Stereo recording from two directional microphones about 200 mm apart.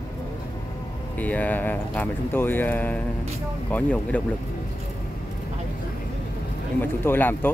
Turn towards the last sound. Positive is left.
turn(degrees=10)  # may be behind; listen again after turning